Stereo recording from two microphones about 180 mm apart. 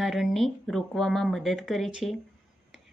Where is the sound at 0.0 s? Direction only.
Centre (ahead or behind).